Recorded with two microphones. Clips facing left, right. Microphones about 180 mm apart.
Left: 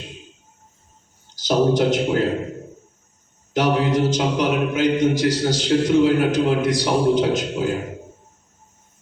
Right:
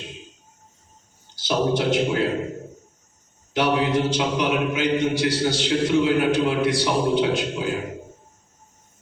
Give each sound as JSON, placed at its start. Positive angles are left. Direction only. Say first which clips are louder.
{"t": 1.4, "sound": "a man's voice", "louder": "left 4 dB", "side_deg": 40}
{"t": 3.5, "sound": "a man's voice", "louder": "left 2 dB", "side_deg": 40}